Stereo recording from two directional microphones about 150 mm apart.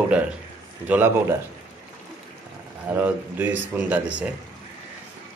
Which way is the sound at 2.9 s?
10° right (ahead or behind).